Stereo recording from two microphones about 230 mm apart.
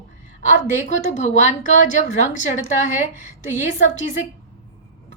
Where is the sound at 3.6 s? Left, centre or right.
Left.